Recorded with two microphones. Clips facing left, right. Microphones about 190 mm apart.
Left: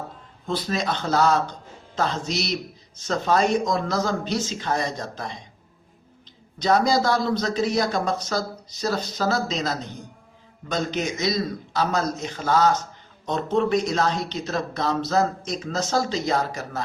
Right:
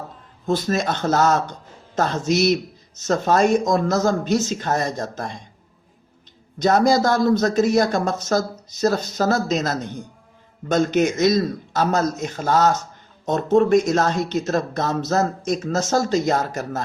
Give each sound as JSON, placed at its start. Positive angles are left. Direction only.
{"t": 0.4, "sound": "speech", "side_deg": -45}
{"t": 6.6, "sound": "speech", "side_deg": -50}